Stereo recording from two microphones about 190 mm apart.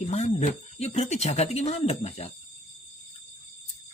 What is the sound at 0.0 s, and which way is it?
Speech, 35° left (ahead or behind).